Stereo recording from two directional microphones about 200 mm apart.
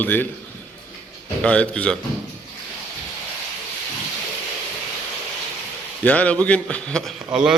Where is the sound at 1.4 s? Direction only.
5° left (ahead or behind).